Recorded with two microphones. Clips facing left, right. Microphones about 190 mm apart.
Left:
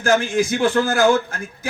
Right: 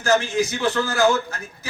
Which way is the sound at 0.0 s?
50° left (ahead or behind).